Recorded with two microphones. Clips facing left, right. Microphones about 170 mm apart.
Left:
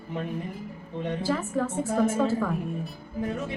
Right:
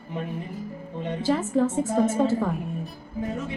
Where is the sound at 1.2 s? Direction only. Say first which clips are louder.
Right 7 dB; 20° right (ahead or behind).